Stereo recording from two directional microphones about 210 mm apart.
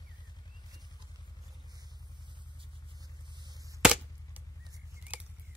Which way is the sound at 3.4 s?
20° right (ahead or behind).